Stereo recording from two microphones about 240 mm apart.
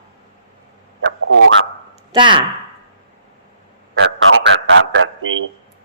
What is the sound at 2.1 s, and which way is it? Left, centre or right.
Speech, centre.